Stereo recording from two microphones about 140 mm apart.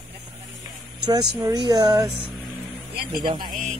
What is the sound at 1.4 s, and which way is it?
Speech, 30° right (ahead or behind).